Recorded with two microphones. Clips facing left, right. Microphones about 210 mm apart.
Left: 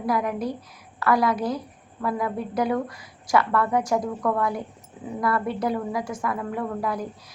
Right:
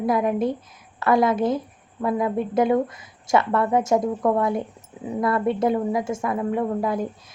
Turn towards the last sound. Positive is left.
turn(degrees=-25)  # may be behind; listen again after turning